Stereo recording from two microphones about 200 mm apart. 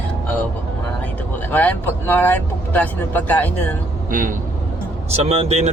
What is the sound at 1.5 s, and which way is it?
Speech, 10° left (ahead or behind).